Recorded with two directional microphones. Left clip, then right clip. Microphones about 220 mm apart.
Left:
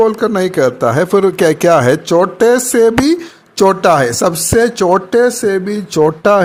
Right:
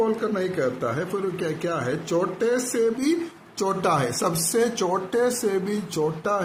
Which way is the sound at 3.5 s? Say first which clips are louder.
Left 14 dB; 35° left (ahead or behind).